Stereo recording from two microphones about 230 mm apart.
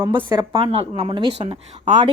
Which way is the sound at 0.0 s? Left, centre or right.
Centre.